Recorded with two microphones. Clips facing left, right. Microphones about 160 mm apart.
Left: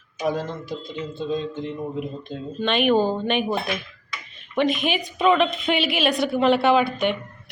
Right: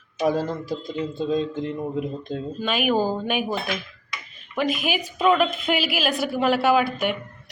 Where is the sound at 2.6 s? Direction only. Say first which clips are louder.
Left 3 dB; 5° right (ahead or behind).